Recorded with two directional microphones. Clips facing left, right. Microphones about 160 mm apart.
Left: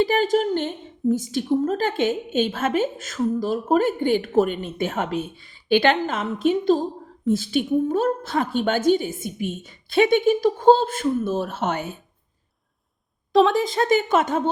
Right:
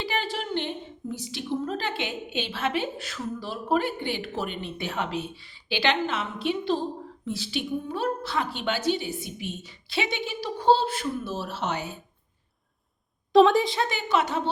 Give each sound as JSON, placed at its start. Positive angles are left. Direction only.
{"t": 0.0, "sound": "a woman's voice", "side_deg": 45}
{"t": 13.3, "sound": "a woman's voice", "side_deg": 0}
{"t": 13.7, "sound": "a woman's voice", "side_deg": 45}